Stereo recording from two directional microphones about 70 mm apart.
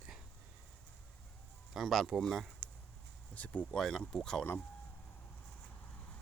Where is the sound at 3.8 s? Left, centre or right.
Centre.